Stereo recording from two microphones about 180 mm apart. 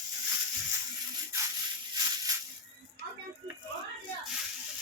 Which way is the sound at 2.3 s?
20° right (ahead or behind).